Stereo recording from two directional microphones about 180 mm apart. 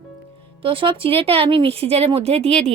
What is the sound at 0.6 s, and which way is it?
Speech, 30° right (ahead or behind).